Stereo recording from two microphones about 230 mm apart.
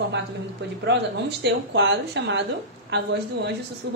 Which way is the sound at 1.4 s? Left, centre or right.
Right.